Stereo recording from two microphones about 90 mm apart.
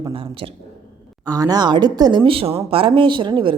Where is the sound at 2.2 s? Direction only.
90° right; by 3.5 s 65° right (ahead or behind).